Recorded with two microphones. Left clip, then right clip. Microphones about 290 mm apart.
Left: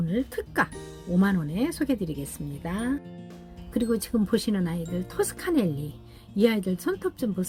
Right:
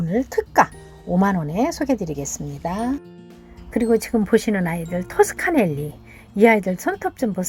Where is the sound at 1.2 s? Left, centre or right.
Right.